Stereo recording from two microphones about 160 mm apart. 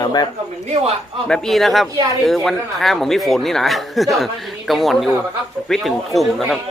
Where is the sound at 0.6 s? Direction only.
45° right (ahead or behind).